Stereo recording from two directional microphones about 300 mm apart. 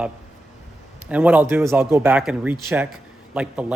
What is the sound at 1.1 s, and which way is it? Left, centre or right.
Speech, centre.